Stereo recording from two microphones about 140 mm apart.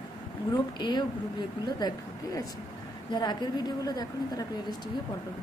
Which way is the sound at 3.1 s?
30° left (ahead or behind).